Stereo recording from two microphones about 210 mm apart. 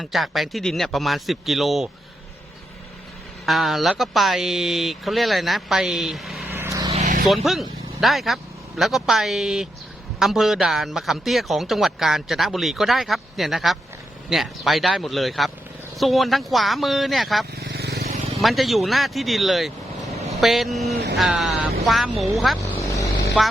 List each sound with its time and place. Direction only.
0.0 s speech: centre (ahead or behind)
3.4 s speech: centre (ahead or behind)
6.5 s vehicle: 15° right (ahead or behind)
6.9 s vehicle: 30° right (ahead or behind)
7.3 s a man's voice: centre (ahead or behind)
17.6 s vehicle: 50° right (ahead or behind)
18.0 s vehicle: 35° right (ahead or behind)
18.4 s speech: centre (ahead or behind)
22.8 s vehicle: 15° left (ahead or behind)